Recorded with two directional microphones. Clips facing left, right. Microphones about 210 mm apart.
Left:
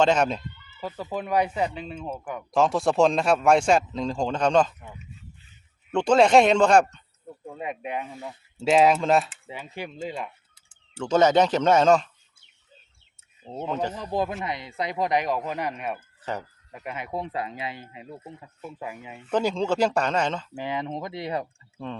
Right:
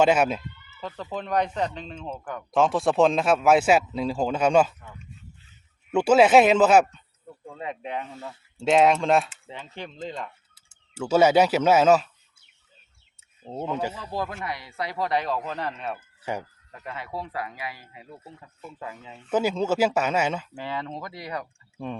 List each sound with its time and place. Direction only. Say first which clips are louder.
0.0 s speech: right 1 dB; 5° right (ahead or behind)
0.8 s speech: left 2 dB; 10° left (ahead or behind); by 4.7 s 10° right (ahead or behind)
5.9 s speech: right 1 dB; 5° right (ahead or behind)
7.3 s speech: left 1 dB; 10° left (ahead or behind)
8.5 s speech: even; centre (ahead or behind)
10.5 s speech: even; 5° right (ahead or behind)
13.4 s speech: even; 10° right (ahead or behind)
14.0 s speech: left 4 dB; 20° left (ahead or behind)
16.3 s speech: right 1 dB; 10° right (ahead or behind)
16.7 s speech: left 2 dB; 20° left (ahead or behind)
19.3 s speech: even; 5° right (ahead or behind)
20.5 s speech: left 3 dB; 15° left (ahead or behind)
21.8 s speech: right 1 dB; 15° right (ahead or behind)